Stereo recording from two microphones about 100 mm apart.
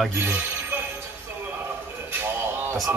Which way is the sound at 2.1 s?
20° right (ahead or behind).